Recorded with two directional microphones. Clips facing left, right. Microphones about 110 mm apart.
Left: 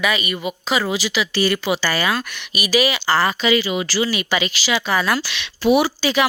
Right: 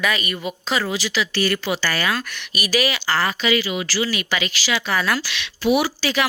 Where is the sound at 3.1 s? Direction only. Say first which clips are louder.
Left 3 dB; 25° left (ahead or behind).